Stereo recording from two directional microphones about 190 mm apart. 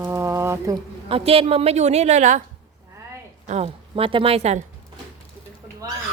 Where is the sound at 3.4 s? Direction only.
35° right (ahead or behind).